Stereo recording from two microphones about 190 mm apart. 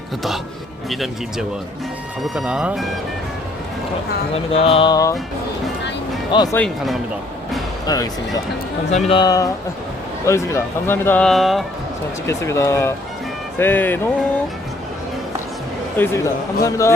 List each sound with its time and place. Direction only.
0.9 s speech: centre (ahead or behind)
4.5 s music: 30° left (ahead or behind)
6.3 s music: 20° left (ahead or behind)
6.6 s speech: centre (ahead or behind)
7.9 s music: 20° left (ahead or behind)
8.9 s music: 30° left (ahead or behind)
10.2 s speech: 15° left (ahead or behind)
12.2 s speech: 15° left (ahead or behind)
16.0 s speech: 15° left (ahead or behind)